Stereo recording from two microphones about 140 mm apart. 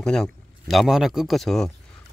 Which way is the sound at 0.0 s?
5° left (ahead or behind).